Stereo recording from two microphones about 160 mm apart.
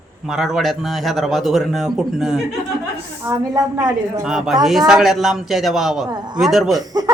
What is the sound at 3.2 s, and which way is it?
Speech, 20° right (ahead or behind).